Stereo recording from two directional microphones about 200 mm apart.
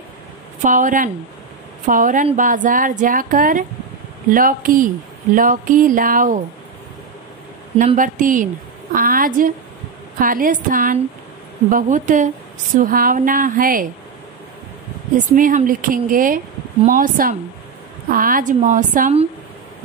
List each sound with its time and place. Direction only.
0.6 s a woman's voice: 40° right (ahead or behind)
7.7 s a woman's voice: 35° right (ahead or behind)
15.1 s a woman's voice: 40° right (ahead or behind)